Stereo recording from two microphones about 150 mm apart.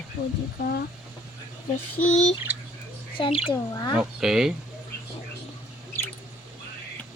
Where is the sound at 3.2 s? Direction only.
30° left (ahead or behind).